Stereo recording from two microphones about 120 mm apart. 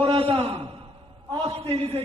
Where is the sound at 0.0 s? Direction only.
45° right (ahead or behind).